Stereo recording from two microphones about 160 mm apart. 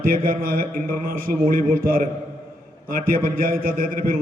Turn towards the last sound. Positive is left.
turn(degrees=-60)  # may be behind; listen again after turning